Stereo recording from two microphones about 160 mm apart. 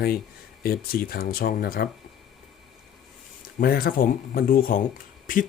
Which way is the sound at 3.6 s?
70° left (ahead or behind).